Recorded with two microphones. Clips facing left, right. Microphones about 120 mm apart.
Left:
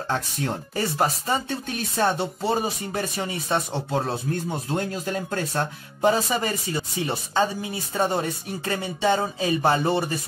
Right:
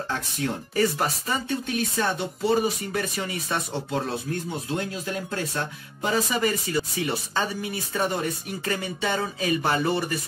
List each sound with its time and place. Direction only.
0.7 s speech: 25° left (ahead or behind)